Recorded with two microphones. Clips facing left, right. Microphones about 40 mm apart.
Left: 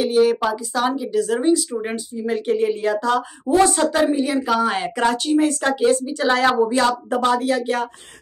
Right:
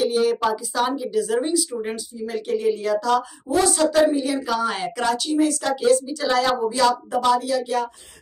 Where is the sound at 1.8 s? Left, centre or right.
Left.